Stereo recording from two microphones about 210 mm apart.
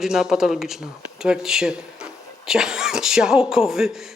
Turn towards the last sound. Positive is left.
turn(degrees=0)  # may be behind; listen again after turning